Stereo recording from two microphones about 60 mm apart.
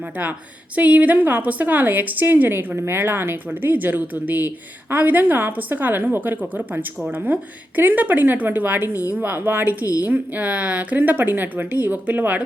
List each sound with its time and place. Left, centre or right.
0.8 s a woman's voice: right
7.8 s a woman's voice: right